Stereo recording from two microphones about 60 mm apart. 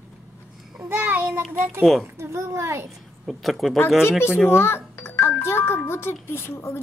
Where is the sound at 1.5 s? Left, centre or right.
Right.